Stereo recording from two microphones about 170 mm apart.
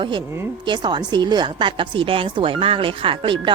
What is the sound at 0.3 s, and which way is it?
Speech, 15° right (ahead or behind).